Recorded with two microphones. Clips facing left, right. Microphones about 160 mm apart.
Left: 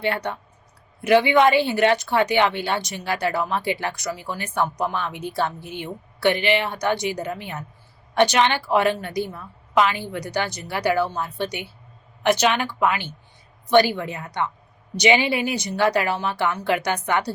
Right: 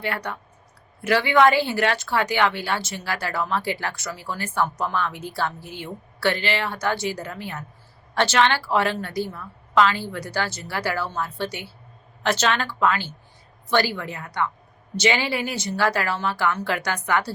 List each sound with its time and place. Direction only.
0.0 s a woman's voice: 25° left (ahead or behind)